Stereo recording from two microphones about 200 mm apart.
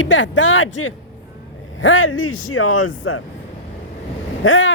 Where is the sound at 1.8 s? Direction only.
85° left.